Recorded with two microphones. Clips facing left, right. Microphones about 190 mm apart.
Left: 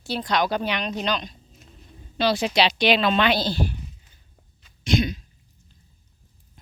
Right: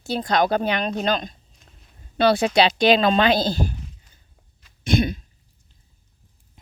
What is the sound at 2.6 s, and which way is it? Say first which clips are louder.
Speech: right 2 dB; 45° right (ahead or behind).